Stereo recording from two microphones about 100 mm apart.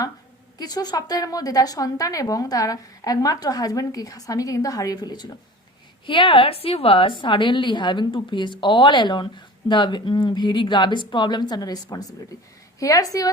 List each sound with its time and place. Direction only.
0.6 s a woman's voice: 40° left (ahead or behind)
6.1 s a woman's voice: 60° left (ahead or behind); by 13.3 s 35° left (ahead or behind)